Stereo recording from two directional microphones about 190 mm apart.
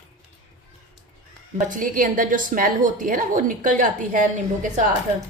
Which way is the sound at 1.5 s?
45° right (ahead or behind).